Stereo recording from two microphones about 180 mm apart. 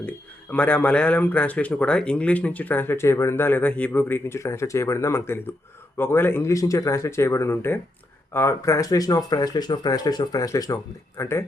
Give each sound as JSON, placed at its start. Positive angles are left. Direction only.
{"t": 0.5, "sound": "speech", "side_deg": 10}